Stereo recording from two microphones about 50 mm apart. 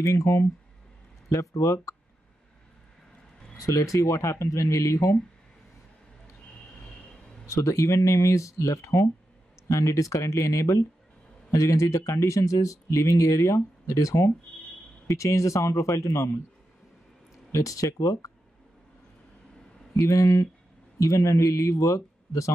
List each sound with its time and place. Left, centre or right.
0.0 s speech: left
3.8 s speech: left
7.4 s speech: left
17.8 s speech: left
20.0 s speech: left